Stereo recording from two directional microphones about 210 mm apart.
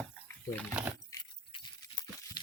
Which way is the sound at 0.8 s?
5° right (ahead or behind).